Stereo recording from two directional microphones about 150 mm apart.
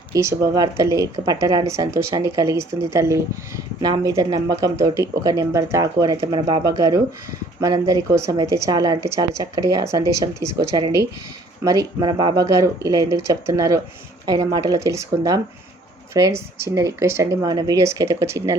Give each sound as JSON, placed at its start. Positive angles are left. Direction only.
{"t": 0.1, "sound": "speech", "side_deg": -20}
{"t": 3.8, "sound": "speech", "side_deg": -30}